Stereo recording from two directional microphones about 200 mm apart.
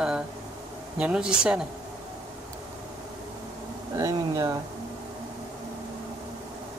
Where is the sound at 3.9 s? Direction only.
15° right (ahead or behind).